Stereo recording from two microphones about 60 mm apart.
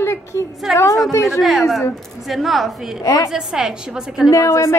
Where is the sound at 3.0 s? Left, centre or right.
Left.